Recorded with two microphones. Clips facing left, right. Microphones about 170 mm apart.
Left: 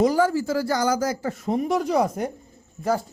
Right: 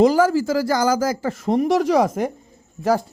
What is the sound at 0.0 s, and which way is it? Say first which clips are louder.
Speech: right 4 dB; 90° right.